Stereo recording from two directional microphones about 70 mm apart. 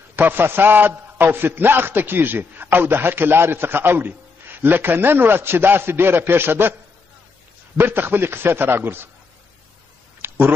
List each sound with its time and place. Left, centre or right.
0.1 s a man's voice: right
7.7 s a man's voice: right
10.2 s a sound: right